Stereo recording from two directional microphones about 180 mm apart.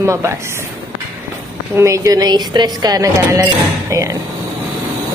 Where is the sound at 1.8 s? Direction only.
15° right (ahead or behind).